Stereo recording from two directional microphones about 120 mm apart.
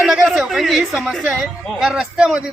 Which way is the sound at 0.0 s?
5° right (ahead or behind).